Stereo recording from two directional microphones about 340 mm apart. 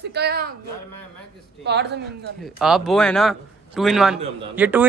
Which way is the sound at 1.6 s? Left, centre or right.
Right.